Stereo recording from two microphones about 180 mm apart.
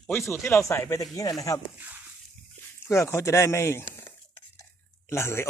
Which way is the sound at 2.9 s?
15° left (ahead or behind).